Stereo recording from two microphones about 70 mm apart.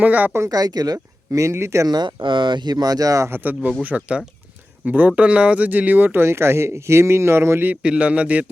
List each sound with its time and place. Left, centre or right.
0.0 s speech: right
0.5 s speech: right
0.9 s speech: right
1.9 s speech: right
3.3 s speech: right
7.7 s a man's voice: centre